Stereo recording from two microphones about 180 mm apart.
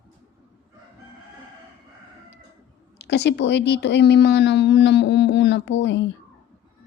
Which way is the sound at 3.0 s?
70° left (ahead or behind).